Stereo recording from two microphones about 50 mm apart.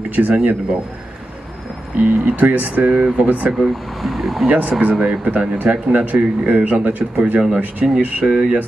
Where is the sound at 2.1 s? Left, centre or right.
Right.